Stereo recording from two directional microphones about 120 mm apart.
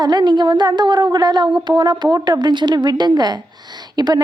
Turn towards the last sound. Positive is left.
turn(degrees=-35)  # may be behind; listen again after turning